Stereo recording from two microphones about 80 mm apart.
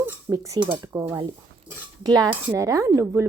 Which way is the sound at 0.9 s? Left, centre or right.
Right.